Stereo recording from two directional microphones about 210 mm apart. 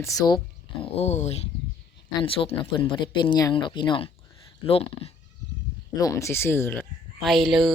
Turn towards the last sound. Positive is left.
turn(degrees=0)  # may be behind; listen again after turning